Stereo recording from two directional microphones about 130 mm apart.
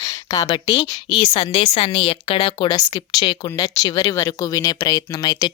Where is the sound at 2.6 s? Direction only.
30° left (ahead or behind).